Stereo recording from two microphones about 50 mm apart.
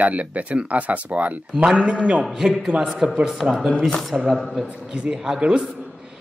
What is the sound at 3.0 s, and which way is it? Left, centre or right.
Speech, right.